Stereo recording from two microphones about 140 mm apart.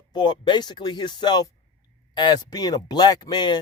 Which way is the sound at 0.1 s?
30° left (ahead or behind).